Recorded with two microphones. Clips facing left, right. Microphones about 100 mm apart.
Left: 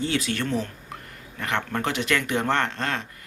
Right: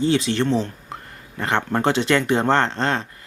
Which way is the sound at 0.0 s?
25° right (ahead or behind).